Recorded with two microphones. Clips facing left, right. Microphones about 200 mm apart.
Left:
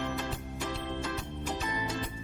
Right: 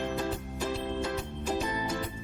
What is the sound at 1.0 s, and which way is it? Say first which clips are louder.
Music: right 3 dB; 10° right (ahead or behind).